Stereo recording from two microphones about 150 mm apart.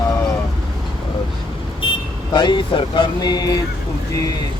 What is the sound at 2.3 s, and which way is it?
Speech, 30° left (ahead or behind).